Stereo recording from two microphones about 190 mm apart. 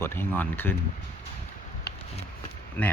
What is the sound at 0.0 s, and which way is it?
Speech, 10° left (ahead or behind).